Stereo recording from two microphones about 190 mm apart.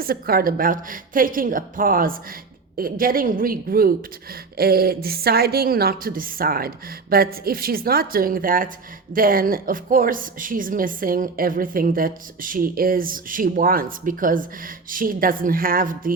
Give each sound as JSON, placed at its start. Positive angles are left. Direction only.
{"t": 0.0, "sound": "a woman's voice", "side_deg": -50}